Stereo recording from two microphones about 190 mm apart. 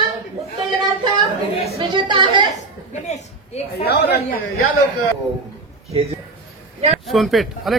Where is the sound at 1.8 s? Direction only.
25° right (ahead or behind).